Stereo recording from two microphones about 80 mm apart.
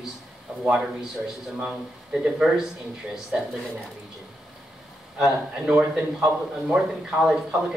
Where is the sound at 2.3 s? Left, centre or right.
Centre.